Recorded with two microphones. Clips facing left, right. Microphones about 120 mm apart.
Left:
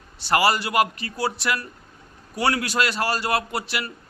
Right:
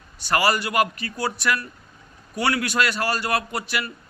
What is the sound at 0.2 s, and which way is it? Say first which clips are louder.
A man's voice: left 1 dB; 25° left (ahead or behind).